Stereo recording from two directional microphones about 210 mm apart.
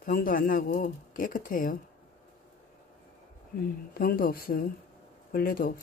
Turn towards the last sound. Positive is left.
turn(degrees=45)  # may be behind; listen again after turning